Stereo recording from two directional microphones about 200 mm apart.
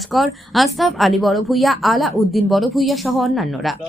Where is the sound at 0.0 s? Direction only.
Centre (ahead or behind).